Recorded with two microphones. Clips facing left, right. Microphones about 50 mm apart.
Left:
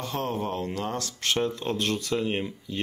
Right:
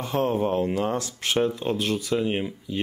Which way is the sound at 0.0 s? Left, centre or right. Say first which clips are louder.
Right 6 dB; centre.